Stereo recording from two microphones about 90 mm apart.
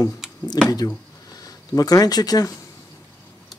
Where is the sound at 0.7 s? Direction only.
45° left (ahead or behind).